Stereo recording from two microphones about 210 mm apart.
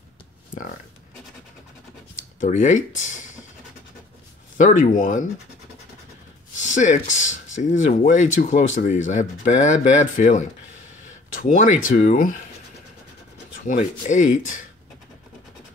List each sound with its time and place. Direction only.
2.4 s speech: 35° left (ahead or behind)
4.6 s speech: 35° left (ahead or behind)
6.6 s speech: 35° left (ahead or behind)
13.7 s speech: 35° left (ahead or behind)